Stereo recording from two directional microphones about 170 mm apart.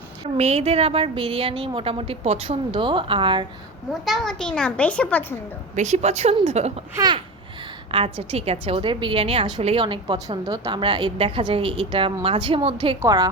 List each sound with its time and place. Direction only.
0.3 s a woman's voice: 40° right (ahead or behind)
4.0 s a child's voice: centre (ahead or behind)
5.7 s a woman's voice: 45° right (ahead or behind)
6.9 s a woman's voice: 25° right (ahead or behind)